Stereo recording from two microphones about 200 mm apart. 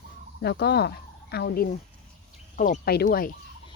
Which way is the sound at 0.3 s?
55° left (ahead or behind).